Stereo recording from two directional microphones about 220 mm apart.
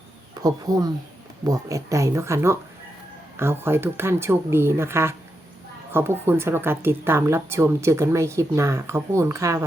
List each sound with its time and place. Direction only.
0.4 s a woman's voice: 15° right (ahead or behind)